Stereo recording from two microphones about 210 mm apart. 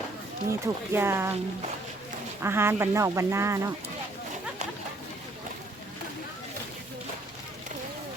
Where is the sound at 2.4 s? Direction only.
10° right (ahead or behind).